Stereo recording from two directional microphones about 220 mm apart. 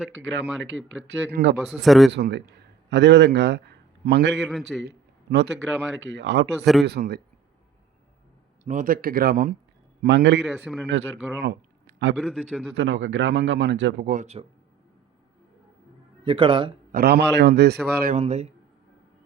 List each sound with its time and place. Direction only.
0.1 s speech: 60° right (ahead or behind)
1.6 s a man's voice: centre (ahead or behind)
2.1 s a man's voice: 50° right (ahead or behind)
4.4 s a man's voice: centre (ahead or behind)
4.8 s a sound: 50° right (ahead or behind)
6.0 s a man's voice: 55° right (ahead or behind)
8.6 s a man's voice: 35° right (ahead or behind)
10.4 s a man's voice: centre (ahead or behind)
11.4 s a sound: 50° right (ahead or behind)
12.1 s a man's voice: centre (ahead or behind)
12.7 s speech: 55° right (ahead or behind); by 14.4 s 35° right (ahead or behind)
16.2 s speech: 20° right (ahead or behind)
16.9 s a man's voice: 45° right (ahead or behind)
18.2 s speech: 30° right (ahead or behind)